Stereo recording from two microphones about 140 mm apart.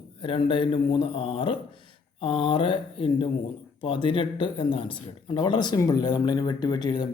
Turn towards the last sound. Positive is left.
turn(degrees=30)  # may be behind; listen again after turning